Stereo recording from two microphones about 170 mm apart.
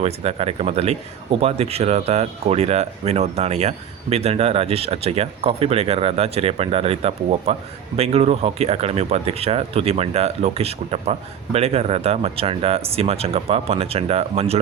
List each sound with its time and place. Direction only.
0.0 s speech: 35° right (ahead or behind)